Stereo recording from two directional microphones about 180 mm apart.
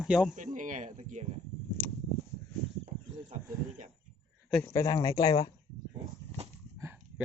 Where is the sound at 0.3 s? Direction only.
45° right (ahead or behind).